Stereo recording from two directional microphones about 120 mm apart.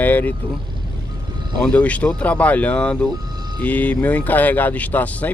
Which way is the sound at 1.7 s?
10° left (ahead or behind).